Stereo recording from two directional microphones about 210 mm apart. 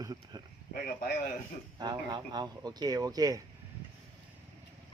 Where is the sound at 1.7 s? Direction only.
20° right (ahead or behind).